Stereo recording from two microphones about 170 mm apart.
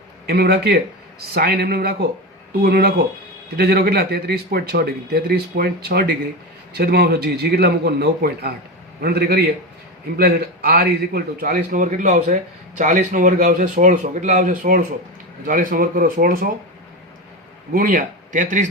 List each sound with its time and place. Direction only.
0.3 s a man's voice: 70° right (ahead or behind)
17.7 s speech: 55° right (ahead or behind)